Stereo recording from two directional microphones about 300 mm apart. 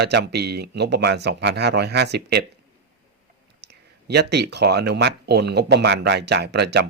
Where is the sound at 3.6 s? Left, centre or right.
Right.